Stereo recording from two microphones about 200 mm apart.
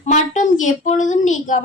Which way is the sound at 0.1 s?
40° left (ahead or behind).